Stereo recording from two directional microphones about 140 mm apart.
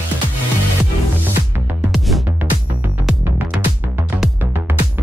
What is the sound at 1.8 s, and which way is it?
Music, centre (ahead or behind).